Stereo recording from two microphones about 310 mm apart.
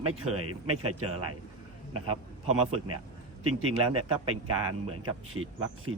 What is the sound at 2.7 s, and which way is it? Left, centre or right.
Speech, right.